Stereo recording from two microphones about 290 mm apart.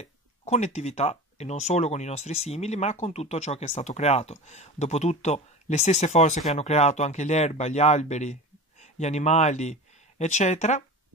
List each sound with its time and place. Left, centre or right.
0.0 s speech: left